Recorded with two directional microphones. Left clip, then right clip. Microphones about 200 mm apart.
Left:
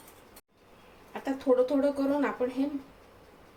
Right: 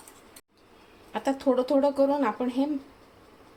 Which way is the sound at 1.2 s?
45° right (ahead or behind).